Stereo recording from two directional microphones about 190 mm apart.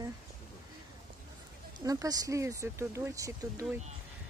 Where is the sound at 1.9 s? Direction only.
20° right (ahead or behind).